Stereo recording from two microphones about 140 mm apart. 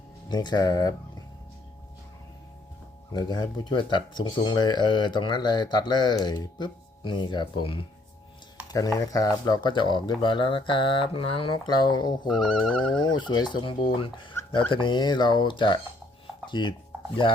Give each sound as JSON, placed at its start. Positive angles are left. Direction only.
{"t": 0.3, "sound": "speech", "side_deg": 30}
{"t": 3.1, "sound": "speech", "side_deg": 30}
{"t": 8.7, "sound": "speech", "side_deg": 25}
{"t": 12.3, "sound": "speech", "side_deg": 5}
{"t": 13.0, "sound": "speech", "side_deg": 30}